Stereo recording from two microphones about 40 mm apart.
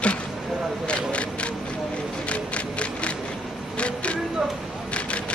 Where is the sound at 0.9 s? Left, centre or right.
Left.